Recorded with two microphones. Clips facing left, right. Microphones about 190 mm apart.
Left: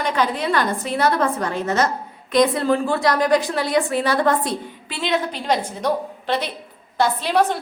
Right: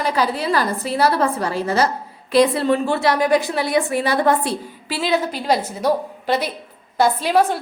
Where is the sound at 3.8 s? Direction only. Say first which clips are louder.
Even; 15° right (ahead or behind).